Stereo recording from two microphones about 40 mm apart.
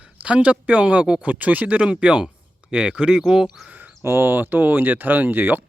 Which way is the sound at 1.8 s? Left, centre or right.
Right.